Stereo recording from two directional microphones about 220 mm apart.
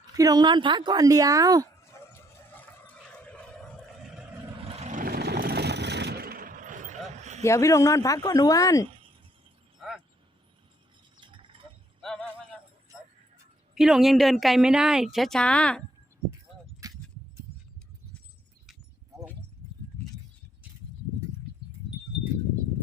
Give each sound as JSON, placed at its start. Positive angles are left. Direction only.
{"t": 0.0, "sound": "speech", "side_deg": -15}
{"t": 1.8, "sound": "turkey", "side_deg": 10}
{"t": 4.7, "sound": "vehicle", "side_deg": -30}
{"t": 7.4, "sound": "speech", "side_deg": 15}
{"t": 11.2, "sound": "a sound", "side_deg": -20}
{"t": 12.9, "sound": "music", "side_deg": 10}
{"t": 13.7, "sound": "a woman's voice", "side_deg": 0}
{"t": 16.8, "sound": "keys jangling", "side_deg": -15}